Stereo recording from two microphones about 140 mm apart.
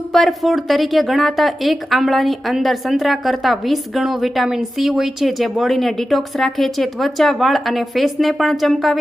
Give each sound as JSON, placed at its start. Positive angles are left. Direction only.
{"t": 0.1, "sound": "a woman's voice", "side_deg": 0}